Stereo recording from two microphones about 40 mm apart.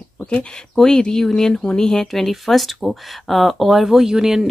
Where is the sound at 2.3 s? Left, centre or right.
Centre.